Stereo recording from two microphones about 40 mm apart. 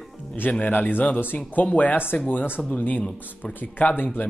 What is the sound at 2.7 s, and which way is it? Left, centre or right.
Speech, left.